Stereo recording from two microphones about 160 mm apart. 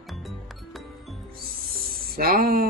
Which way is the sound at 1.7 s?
65° right (ahead or behind).